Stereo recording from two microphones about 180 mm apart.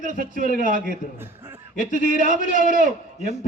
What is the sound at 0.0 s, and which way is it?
Speech, 50° right (ahead or behind).